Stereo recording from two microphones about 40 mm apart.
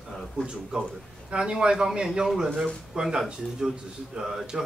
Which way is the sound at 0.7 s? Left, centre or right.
Right.